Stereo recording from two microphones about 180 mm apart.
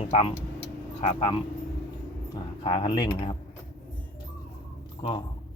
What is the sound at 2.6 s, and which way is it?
Speech, 30° left (ahead or behind).